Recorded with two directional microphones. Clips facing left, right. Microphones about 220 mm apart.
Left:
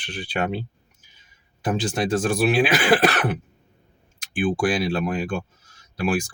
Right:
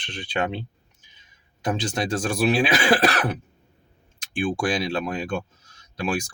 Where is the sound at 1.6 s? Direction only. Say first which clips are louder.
Left 2 dB; 5° left (ahead or behind).